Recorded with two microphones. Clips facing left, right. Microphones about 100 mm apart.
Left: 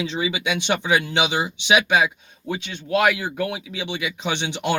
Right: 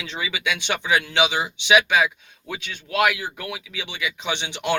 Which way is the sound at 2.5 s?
25° left (ahead or behind).